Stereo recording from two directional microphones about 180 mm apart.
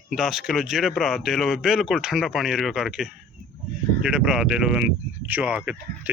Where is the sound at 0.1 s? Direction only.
Centre (ahead or behind).